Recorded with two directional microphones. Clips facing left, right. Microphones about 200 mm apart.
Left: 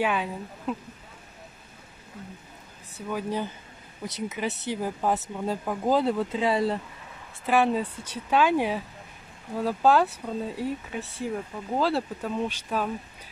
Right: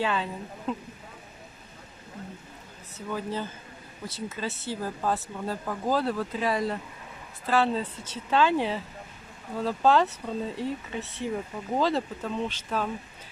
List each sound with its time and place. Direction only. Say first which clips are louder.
0.0 s speech: left 2 dB; 10° left (ahead or behind)
2.1 s speech: right 1 dB; 50° right (ahead or behind)
3.1 s speech: left 2 dB; 15° left (ahead or behind)
7.4 s speech: left 2 dB; 15° left (ahead or behind)